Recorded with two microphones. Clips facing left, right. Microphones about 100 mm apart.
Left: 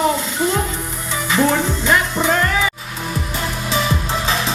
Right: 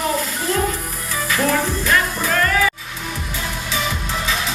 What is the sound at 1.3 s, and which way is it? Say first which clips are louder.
Music: left 3 dB; 25° left (ahead or behind).